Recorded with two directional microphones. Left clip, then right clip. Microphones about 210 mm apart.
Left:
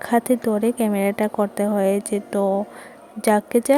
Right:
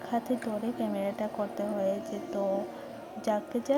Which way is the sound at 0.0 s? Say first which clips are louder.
Left 12 dB; 40° left (ahead or behind).